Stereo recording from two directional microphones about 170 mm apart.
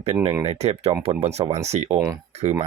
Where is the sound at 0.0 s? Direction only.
35° right (ahead or behind).